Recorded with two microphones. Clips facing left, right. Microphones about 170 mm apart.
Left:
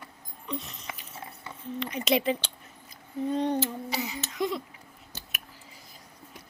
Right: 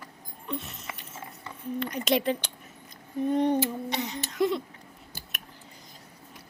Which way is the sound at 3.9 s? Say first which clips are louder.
Right 1 dB; 5° left (ahead or behind).